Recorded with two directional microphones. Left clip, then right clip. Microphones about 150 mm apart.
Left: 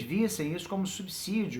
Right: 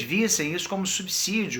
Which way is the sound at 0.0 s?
15° right (ahead or behind).